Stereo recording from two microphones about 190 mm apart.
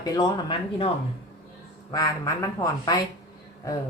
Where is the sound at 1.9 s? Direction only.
20° left (ahead or behind).